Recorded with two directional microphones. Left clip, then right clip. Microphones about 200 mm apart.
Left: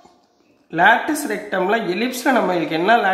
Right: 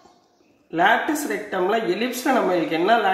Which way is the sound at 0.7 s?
30° left (ahead or behind).